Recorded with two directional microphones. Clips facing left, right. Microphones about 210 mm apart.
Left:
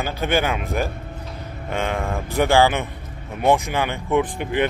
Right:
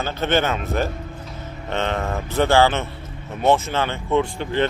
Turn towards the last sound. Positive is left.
turn(degrees=15)  # may be behind; listen again after turning